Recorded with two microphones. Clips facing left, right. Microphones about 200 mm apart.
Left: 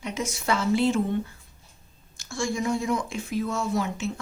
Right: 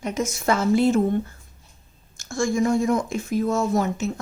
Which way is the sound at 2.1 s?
45° right (ahead or behind).